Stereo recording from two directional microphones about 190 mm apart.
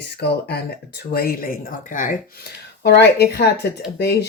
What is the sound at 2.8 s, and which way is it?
Speech, 60° left (ahead or behind).